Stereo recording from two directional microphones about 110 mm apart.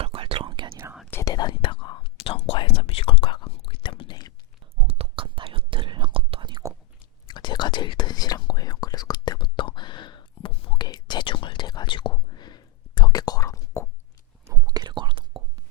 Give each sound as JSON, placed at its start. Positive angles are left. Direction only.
{"t": 0.0, "sound": "whispering", "side_deg": -55}
{"t": 1.2, "sound": "whispering", "side_deg": 40}
{"t": 4.8, "sound": "whispering", "side_deg": -60}
{"t": 7.3, "sound": "whispering", "side_deg": 40}
{"t": 14.4, "sound": "whispering", "side_deg": -25}